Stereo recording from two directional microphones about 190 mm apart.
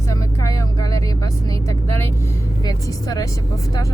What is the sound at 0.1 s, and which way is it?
Vehicle, 15° left (ahead or behind).